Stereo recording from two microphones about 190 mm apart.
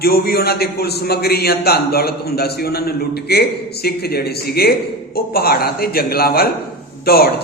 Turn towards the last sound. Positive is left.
turn(degrees=55)  # may be behind; listen again after turning